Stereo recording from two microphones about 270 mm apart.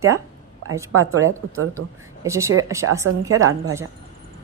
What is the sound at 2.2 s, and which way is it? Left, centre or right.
A woman's voice, centre.